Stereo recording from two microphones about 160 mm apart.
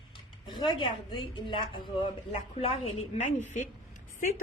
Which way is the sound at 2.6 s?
40° left (ahead or behind).